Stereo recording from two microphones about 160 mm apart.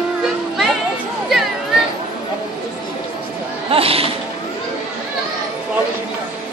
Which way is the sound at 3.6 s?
35° right (ahead or behind).